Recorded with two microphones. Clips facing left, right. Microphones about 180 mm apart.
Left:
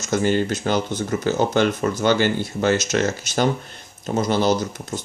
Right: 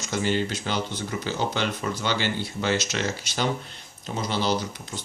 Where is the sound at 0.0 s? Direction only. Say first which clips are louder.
Left 6 dB; 45° left (ahead or behind).